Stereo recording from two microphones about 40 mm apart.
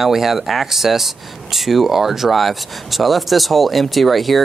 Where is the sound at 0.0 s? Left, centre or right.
Centre.